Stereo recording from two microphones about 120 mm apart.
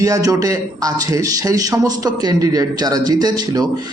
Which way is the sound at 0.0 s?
30° right (ahead or behind).